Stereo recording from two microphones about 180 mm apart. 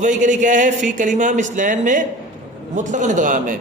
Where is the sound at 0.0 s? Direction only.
45° right (ahead or behind).